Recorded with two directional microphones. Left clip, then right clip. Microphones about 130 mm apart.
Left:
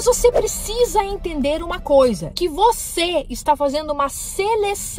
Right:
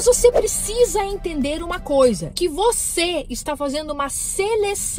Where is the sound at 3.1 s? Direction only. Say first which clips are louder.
Left 6 dB; 10° left (ahead or behind).